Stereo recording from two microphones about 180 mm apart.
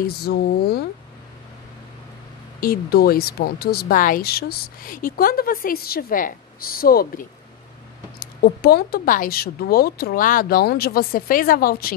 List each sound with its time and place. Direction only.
0.0 s speech: 60° left (ahead or behind)
2.6 s speech: 55° left (ahead or behind)